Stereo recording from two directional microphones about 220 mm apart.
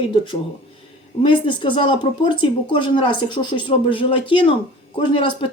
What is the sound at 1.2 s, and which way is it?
Speech, 20° left (ahead or behind).